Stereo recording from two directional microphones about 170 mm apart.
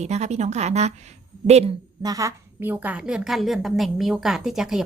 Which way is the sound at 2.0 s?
20° right (ahead or behind).